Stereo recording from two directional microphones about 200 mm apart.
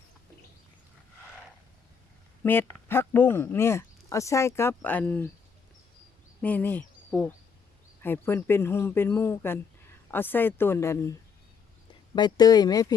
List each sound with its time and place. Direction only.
2.4 s speech: 10° left (ahead or behind)
6.4 s speech: 10° left (ahead or behind)
12.1 s speech: 20° left (ahead or behind)